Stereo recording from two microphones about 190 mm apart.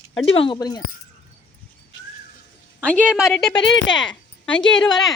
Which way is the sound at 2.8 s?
5° left (ahead or behind).